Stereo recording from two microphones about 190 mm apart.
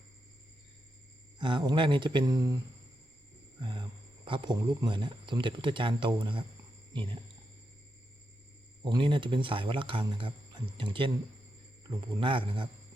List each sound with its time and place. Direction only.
1.4 s speech: 25° right (ahead or behind)
3.6 s a sound: 25° right (ahead or behind)
4.3 s speech: 25° right (ahead or behind)
8.8 s speech: 25° right (ahead or behind)